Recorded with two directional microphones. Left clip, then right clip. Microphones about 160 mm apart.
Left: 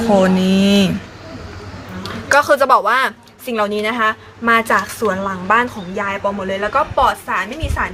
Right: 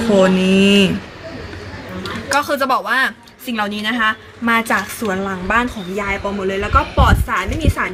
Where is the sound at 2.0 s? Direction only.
75° left (ahead or behind).